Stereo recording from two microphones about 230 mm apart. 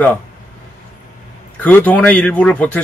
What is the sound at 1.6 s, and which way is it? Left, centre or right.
Speech, centre.